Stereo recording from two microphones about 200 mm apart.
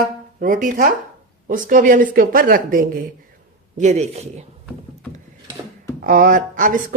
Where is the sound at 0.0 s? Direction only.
45° right (ahead or behind).